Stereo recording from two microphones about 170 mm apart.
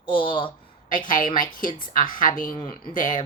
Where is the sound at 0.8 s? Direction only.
50° left (ahead or behind).